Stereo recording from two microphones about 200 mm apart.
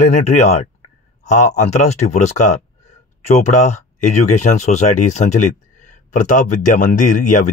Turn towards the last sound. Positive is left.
turn(degrees=40)  # may be behind; listen again after turning